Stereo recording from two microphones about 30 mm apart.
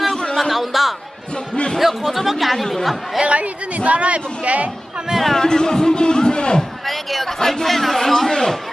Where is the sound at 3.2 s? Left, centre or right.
Right.